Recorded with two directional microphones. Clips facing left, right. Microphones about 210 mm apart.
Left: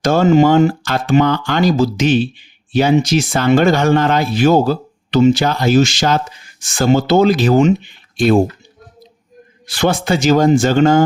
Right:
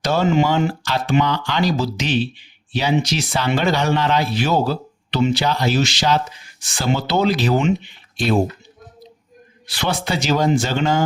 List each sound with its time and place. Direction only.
0.0 s speech: 50° left (ahead or behind)
9.6 s speech: 50° left (ahead or behind)